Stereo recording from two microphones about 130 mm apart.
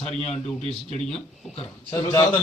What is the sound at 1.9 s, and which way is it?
Speech, 30° left (ahead or behind).